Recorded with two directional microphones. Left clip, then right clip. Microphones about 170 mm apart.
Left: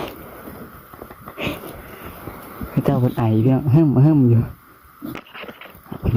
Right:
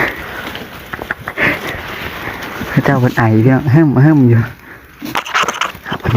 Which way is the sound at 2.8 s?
Centre (ahead or behind).